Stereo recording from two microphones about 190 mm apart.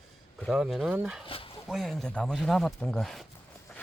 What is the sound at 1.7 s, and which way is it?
Speech, centre (ahead or behind).